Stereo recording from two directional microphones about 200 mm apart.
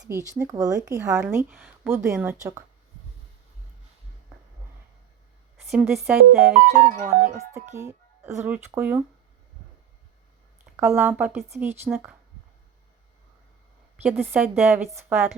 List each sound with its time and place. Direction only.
0.0 s speech: 15° right (ahead or behind)
5.7 s speech: centre (ahead or behind)
7.0 s speech: 40° right (ahead or behind)
7.8 s speech: 15° right (ahead or behind)
10.8 s speech: 10° right (ahead or behind)
13.9 s speech: 5° right (ahead or behind)